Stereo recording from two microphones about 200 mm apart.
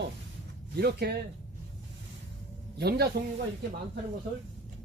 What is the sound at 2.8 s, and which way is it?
Speech, 50° right (ahead or behind).